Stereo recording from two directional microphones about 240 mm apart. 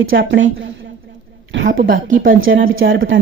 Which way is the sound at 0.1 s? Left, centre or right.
Right.